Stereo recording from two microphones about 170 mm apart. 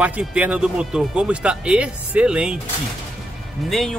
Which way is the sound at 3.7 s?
Centre (ahead or behind).